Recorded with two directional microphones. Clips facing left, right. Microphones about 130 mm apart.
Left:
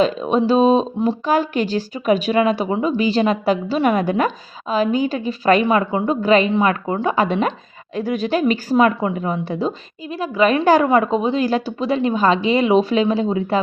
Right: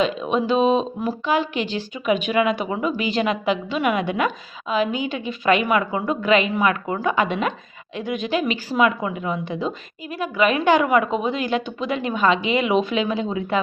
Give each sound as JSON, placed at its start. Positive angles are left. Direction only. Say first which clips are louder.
{"t": 0.0, "sound": "speech", "louder": "left 4 dB", "side_deg": 35}
{"t": 5.6, "sound": "speech", "louder": "left 4 dB", "side_deg": 30}